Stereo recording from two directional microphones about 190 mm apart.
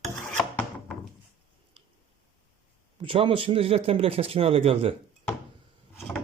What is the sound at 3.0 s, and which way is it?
Speech, 30° right (ahead or behind).